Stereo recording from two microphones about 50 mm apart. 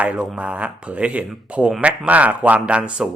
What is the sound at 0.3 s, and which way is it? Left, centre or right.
Speech, right.